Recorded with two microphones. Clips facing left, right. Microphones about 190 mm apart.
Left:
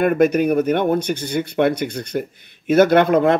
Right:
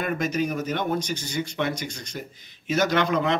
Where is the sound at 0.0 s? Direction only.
55° left (ahead or behind).